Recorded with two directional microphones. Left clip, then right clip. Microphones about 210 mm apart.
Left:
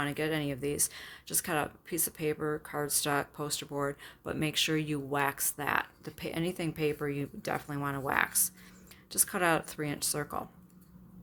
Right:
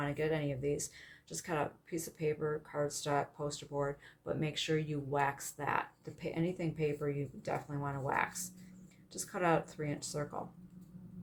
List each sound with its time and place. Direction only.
0.0 s speech: 45° left (ahead or behind)